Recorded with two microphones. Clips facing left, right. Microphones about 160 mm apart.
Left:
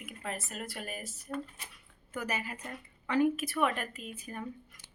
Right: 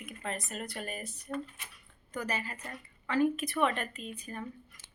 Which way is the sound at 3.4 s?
5° left (ahead or behind).